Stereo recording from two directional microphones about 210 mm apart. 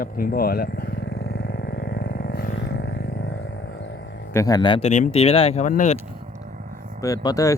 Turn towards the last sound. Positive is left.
turn(degrees=15)  # may be behind; listen again after turning